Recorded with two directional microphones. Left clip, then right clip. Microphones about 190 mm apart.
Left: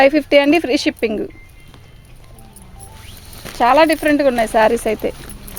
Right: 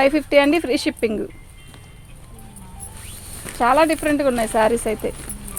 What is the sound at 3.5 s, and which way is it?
Speech, 45° left (ahead or behind).